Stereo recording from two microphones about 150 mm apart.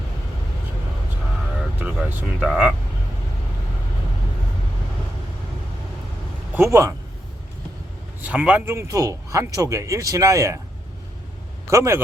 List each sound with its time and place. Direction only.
1.8 s speech: 10° right (ahead or behind)
6.5 s a man's voice: 15° right (ahead or behind)
8.2 s speech: 10° right (ahead or behind)
11.7 s speech: 20° right (ahead or behind)